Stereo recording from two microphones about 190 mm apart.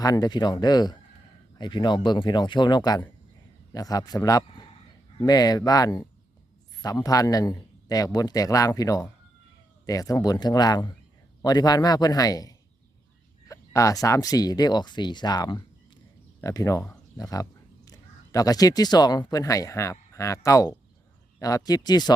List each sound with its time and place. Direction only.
0.0 s a man's voice: 20° left (ahead or behind)